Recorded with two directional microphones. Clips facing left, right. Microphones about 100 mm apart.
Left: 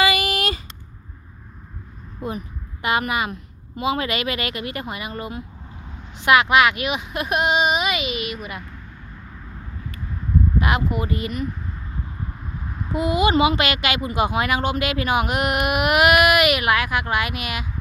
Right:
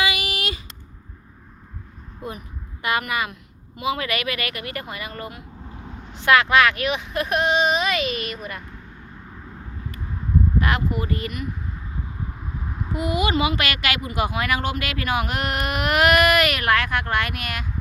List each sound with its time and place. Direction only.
0.0 s a sound: 40° left (ahead or behind)
3.1 s speech: 25° left (ahead or behind); by 8.6 s 10° left (ahead or behind)
10.6 s speech: 15° left (ahead or behind)
12.9 s speech: 25° left (ahead or behind); by 17.7 s 10° left (ahead or behind)